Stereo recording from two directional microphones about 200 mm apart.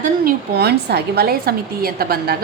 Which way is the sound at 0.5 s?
55° right (ahead or behind).